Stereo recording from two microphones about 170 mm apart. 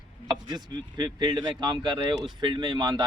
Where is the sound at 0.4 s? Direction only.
25° right (ahead or behind).